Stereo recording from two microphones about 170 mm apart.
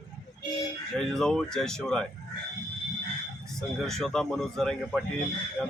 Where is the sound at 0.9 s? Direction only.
5° left (ahead or behind).